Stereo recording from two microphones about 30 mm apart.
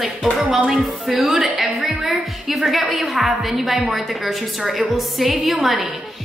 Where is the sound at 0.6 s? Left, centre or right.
Centre.